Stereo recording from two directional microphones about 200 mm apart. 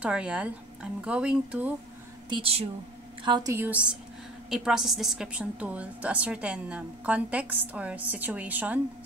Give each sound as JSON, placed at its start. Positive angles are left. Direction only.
{"t": 0.0, "sound": "speech", "side_deg": -5}
{"t": 2.2, "sound": "a woman's voice", "side_deg": -25}